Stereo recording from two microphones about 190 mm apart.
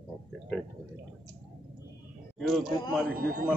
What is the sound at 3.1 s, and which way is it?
Speech, 50° right (ahead or behind).